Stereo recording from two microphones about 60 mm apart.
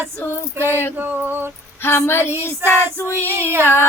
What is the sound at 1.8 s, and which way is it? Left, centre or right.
Child singing, left.